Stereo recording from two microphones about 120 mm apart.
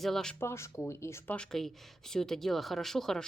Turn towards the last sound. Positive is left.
turn(degrees=5)  # may be behind; listen again after turning